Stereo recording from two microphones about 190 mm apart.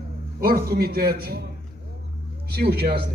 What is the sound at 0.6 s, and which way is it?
Speech, 50° right (ahead or behind).